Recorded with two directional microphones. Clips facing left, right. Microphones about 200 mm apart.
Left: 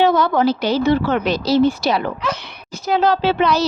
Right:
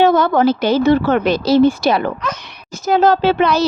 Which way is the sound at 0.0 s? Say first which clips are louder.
Right 3 dB; 50° right (ahead or behind).